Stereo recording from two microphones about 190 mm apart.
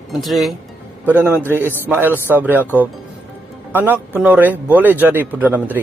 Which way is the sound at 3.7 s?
10° right (ahead or behind).